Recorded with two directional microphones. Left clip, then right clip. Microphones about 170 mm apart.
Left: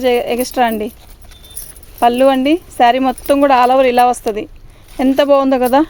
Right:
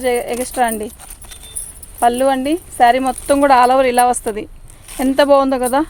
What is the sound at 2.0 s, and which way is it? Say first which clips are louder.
Speech: left 3 dB; 40° left (ahead or behind).